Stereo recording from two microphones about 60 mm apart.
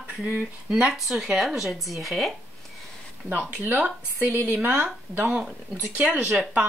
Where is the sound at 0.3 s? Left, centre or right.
Right.